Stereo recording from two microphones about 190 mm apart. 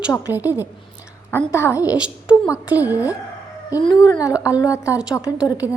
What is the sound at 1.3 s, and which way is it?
Music, 15° left (ahead or behind).